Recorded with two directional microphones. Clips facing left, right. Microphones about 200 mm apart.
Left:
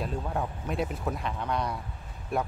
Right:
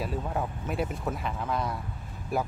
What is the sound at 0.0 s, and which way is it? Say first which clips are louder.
Speech: even; 5° right (ahead or behind).